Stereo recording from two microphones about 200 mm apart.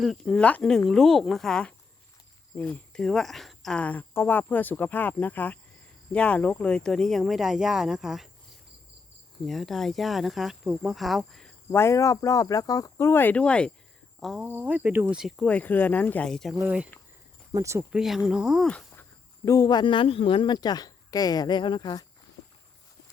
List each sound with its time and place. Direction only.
0.0 s speech: centre (ahead or behind)
9.5 s speech: centre (ahead or behind)
18.0 s speech: centre (ahead or behind)
19.5 s speech: 20° left (ahead or behind)